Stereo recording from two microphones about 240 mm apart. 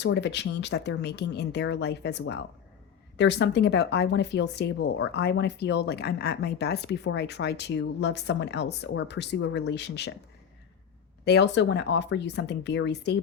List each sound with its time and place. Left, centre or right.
0.0 s speech: left
11.3 s speech: left